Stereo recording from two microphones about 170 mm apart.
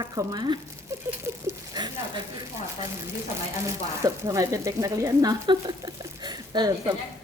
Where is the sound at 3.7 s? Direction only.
20° right (ahead or behind).